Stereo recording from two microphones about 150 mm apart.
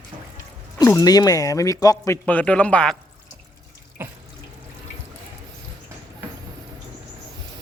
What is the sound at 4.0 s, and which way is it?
Water tap, 15° right (ahead or behind).